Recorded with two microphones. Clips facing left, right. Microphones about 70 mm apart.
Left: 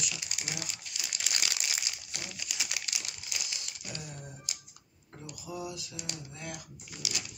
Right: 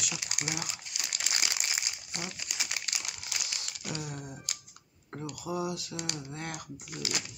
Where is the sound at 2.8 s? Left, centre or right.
Right.